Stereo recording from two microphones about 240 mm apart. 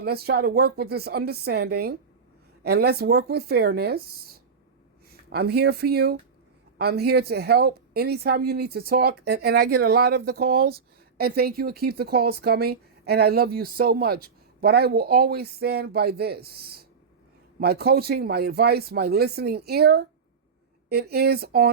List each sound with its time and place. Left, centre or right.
0.0 s speech: right
5.3 s speech: right